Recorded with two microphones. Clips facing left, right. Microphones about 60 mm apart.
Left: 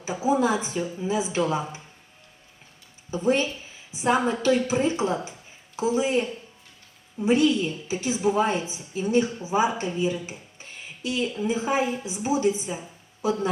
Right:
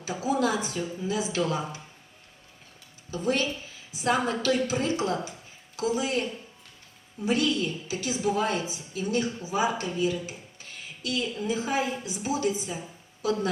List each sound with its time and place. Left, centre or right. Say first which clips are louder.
0.0 s a woman's voice: left 4 dB; left
3.1 s a woman's voice: left 4 dB; left
10.2 s a sound: left 1 dB; left
11.4 s a woman's voice: left 4 dB; left